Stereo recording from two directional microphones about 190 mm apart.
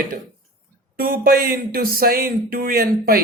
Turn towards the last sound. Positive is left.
turn(degrees=-50)  # may be behind; listen again after turning